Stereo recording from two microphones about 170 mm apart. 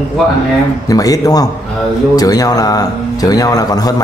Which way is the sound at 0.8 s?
20° left (ahead or behind).